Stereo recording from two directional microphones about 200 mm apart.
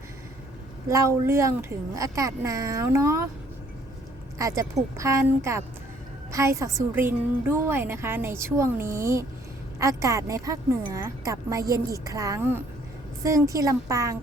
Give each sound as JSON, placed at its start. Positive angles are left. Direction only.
{"t": 0.9, "sound": "a woman's voice", "side_deg": -15}
{"t": 4.4, "sound": "a woman's voice", "side_deg": -15}